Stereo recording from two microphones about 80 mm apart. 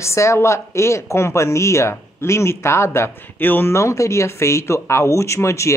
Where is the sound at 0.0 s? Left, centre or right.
Left.